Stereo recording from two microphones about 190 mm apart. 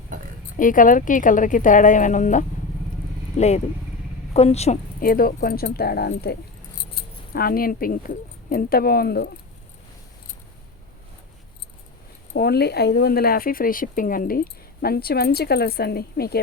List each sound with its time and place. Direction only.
0.1 s oink: 45° right (ahead or behind)
0.5 s a woman's voice: 45° left (ahead or behind)
4.9 s speech: 50° left (ahead or behind)
7.3 s speech: 50° left (ahead or behind)
12.3 s speech: 60° left (ahead or behind)